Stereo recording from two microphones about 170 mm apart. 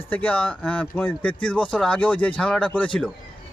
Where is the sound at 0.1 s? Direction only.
10° left (ahead or behind).